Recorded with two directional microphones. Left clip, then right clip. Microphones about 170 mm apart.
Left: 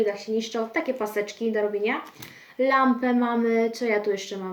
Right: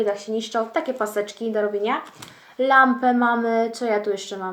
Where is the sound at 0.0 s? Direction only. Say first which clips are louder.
Right 2 dB; 5° left (ahead or behind).